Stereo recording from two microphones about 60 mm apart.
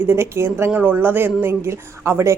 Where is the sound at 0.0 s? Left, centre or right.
Right.